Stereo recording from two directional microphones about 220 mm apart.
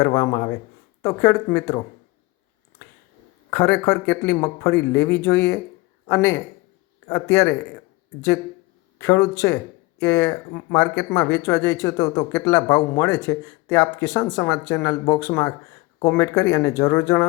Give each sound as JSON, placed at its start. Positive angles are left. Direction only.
{"t": 0.0, "sound": "speech", "side_deg": 20}
{"t": 3.5, "sound": "speech", "side_deg": 15}
{"t": 9.0, "sound": "speech", "side_deg": 15}